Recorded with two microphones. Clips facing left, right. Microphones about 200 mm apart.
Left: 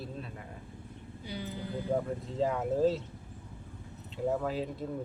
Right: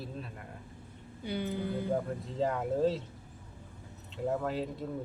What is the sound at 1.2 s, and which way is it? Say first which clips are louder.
Speech: right 5 dB; 60° right (ahead or behind).